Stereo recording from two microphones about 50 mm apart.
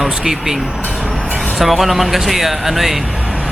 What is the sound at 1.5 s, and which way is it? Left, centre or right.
Speech, centre.